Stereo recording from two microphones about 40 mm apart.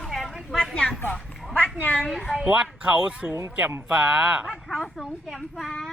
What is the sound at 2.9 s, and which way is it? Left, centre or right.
Speech, right.